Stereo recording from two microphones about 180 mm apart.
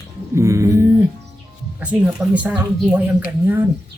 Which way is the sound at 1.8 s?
5° right (ahead or behind).